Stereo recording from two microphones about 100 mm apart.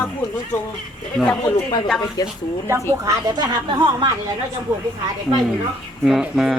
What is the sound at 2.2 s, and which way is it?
Speech, 40° left (ahead or behind).